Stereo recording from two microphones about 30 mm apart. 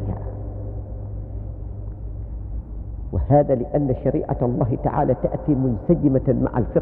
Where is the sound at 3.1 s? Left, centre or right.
Centre.